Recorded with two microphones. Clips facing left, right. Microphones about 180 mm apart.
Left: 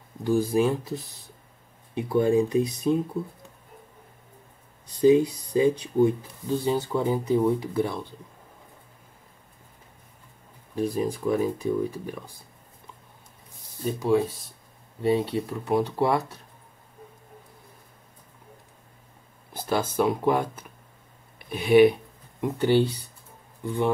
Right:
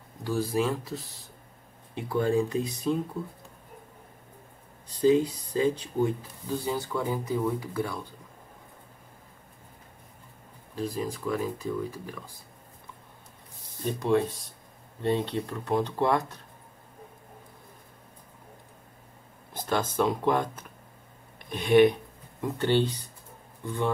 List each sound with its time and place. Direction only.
0.2 s speech: 20° left (ahead or behind)
4.9 s speech: 15° left (ahead or behind)
11.0 s speech: 20° left (ahead or behind)
13.8 s speech: centre (ahead or behind)
19.5 s speech: 10° left (ahead or behind)